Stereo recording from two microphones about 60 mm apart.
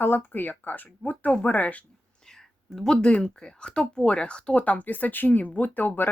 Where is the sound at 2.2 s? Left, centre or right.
Centre.